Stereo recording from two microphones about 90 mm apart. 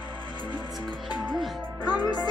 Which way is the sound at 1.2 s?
Centre (ahead or behind).